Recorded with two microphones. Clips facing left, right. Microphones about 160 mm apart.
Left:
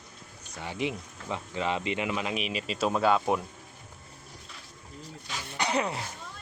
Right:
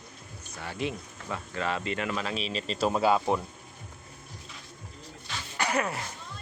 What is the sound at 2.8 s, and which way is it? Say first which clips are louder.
Speech: even; 10° right (ahead or behind).